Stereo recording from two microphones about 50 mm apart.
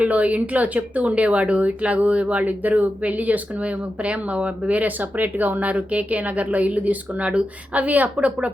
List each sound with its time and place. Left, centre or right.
0.0 s speech: right